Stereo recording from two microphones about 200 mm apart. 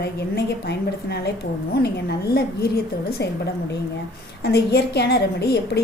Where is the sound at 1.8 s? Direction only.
50° left (ahead or behind).